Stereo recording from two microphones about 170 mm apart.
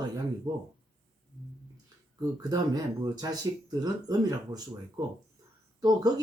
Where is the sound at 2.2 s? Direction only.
25° right (ahead or behind).